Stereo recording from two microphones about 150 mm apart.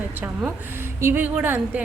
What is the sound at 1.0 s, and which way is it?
Speech, 15° right (ahead or behind).